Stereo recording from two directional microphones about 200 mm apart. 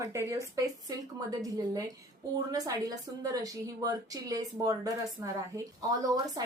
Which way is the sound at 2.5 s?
15° right (ahead or behind).